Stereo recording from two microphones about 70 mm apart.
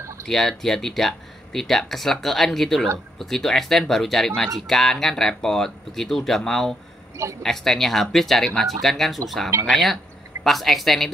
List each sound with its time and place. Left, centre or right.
0.3 s speech: centre